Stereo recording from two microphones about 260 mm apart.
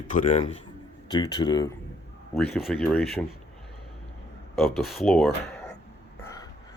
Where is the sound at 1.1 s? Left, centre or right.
Centre.